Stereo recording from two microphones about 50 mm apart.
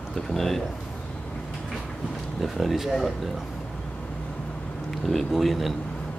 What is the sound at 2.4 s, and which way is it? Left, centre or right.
Speech, centre.